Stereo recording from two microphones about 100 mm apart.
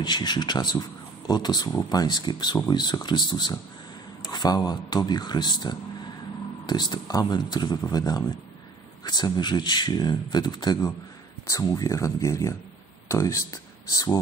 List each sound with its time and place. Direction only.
0.0 s speech: 45° left (ahead or behind)